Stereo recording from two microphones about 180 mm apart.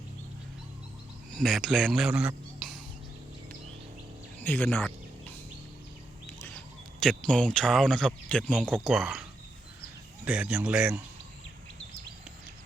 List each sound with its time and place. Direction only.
1.3 s speech: centre (ahead or behind)
4.4 s a sound: 10° left (ahead or behind)
7.0 s speech: 5° left (ahead or behind)
10.2 s speech: 5° right (ahead or behind)